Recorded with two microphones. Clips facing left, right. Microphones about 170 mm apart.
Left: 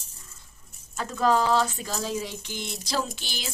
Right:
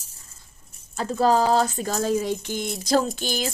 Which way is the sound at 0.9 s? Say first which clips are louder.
Right 3 dB; 35° right (ahead or behind).